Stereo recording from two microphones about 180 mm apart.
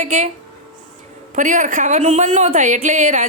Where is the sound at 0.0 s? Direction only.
40° right (ahead or behind).